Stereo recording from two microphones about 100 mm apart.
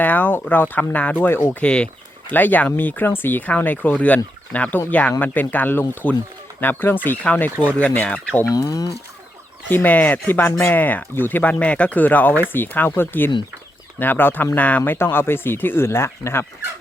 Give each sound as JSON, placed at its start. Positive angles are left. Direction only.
{"t": 0.0, "sound": "speech", "side_deg": 15}
{"t": 1.6, "sound": "speech", "side_deg": 10}
{"t": 8.4, "sound": "speech", "side_deg": 35}
{"t": 9.6, "sound": "speech", "side_deg": 15}